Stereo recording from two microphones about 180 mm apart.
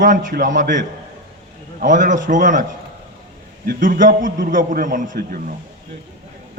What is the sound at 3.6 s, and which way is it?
A man's voice, 45° right (ahead or behind).